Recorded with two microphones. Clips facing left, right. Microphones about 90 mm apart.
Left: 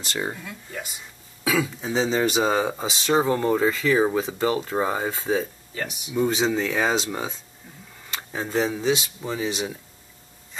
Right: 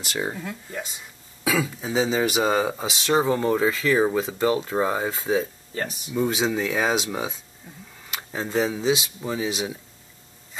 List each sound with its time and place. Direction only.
0.0 s speech: 5° right (ahead or behind)
5.8 s speech: 35° right (ahead or behind)
6.1 s speech: centre (ahead or behind)
8.2 s a sound: centre (ahead or behind)
8.6 s speech: 5° right (ahead or behind)